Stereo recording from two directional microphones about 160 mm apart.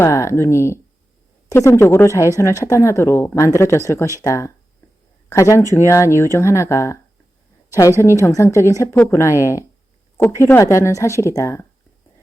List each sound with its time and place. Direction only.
0.0 s speech: 20° left (ahead or behind)
8.2 s speech: 20° left (ahead or behind)